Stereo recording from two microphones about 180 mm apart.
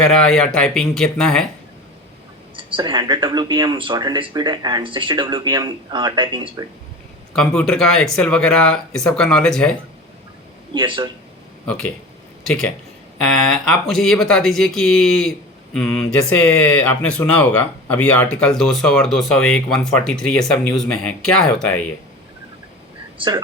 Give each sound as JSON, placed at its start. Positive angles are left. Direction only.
{"t": 0.0, "sound": "speech", "side_deg": 5}
{"t": 2.7, "sound": "speech", "side_deg": -25}
{"t": 7.3, "sound": "speech", "side_deg": 5}
{"t": 10.8, "sound": "speech", "side_deg": -25}
{"t": 11.6, "sound": "speech", "side_deg": 5}